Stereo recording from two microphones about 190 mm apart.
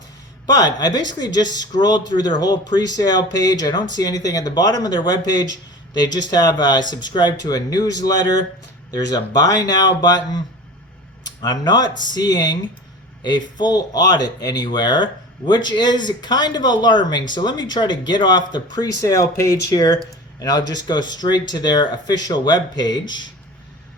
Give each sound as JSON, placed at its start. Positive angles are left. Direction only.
{"t": 0.4, "sound": "speech", "side_deg": 20}